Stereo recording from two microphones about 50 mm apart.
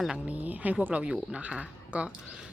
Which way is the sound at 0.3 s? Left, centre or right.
Right.